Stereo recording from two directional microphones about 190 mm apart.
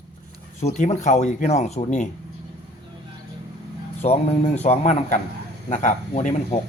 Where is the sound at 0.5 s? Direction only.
35° left (ahead or behind).